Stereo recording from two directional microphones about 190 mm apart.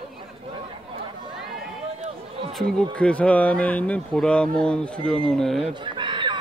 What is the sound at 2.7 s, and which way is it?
Speech, 5° left (ahead or behind).